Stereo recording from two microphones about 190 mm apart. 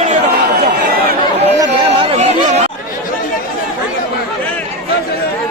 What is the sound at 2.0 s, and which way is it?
Chatter, 35° right (ahead or behind).